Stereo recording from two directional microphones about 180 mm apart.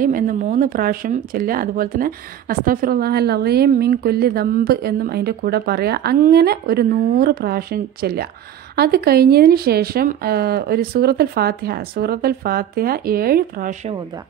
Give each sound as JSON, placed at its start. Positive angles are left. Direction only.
{"t": 0.0, "sound": "speech", "side_deg": -50}